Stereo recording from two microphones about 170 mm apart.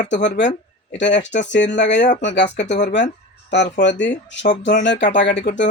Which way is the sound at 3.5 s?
90° left.